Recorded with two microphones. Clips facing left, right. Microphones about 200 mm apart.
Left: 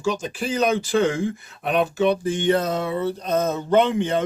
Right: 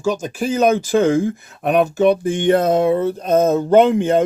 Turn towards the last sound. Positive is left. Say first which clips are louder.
# right 6 dB
turn(degrees=-45)  # may be behind; listen again after turning